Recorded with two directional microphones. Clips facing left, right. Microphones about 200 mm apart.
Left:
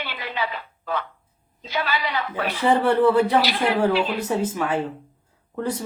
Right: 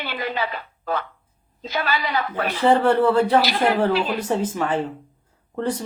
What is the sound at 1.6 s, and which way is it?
A woman's voice, 45° right (ahead or behind).